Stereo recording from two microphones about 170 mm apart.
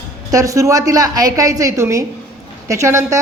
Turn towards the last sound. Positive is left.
turn(degrees=-15)  # may be behind; listen again after turning